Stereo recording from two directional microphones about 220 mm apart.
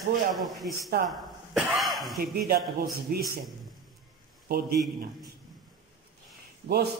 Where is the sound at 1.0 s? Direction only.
Centre (ahead or behind).